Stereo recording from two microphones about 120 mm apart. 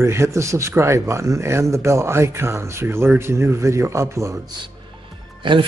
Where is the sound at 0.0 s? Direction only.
25° right (ahead or behind).